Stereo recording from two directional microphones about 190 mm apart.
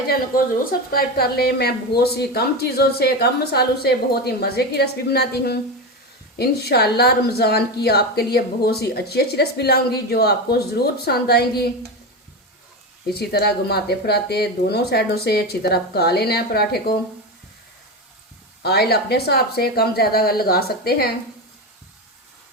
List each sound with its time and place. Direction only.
0.1 s a woman's voice: 50° left (ahead or behind)
13.1 s a woman's voice: 55° left (ahead or behind)
18.6 s a woman's voice: 55° left (ahead or behind)